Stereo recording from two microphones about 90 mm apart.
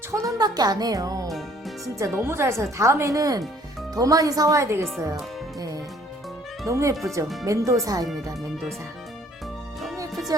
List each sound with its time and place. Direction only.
0.1 s speech: 40° right (ahead or behind)
1.3 s music: centre (ahead or behind)
1.8 s speech: 30° right (ahead or behind)